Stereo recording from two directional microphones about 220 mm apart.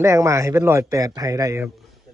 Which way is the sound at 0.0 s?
15° right (ahead or behind).